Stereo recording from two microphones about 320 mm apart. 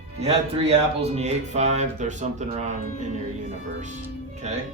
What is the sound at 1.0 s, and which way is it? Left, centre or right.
Speech, centre.